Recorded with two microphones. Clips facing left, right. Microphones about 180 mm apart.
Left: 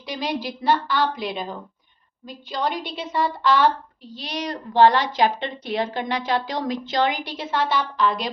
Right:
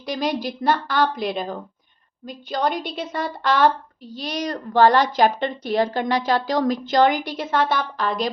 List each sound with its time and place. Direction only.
0.0 s a woman's voice: 45° right (ahead or behind)